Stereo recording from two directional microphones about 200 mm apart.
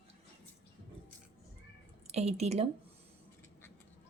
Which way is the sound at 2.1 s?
30° right (ahead or behind).